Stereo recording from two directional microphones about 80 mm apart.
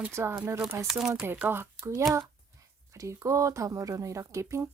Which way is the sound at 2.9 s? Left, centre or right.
Right.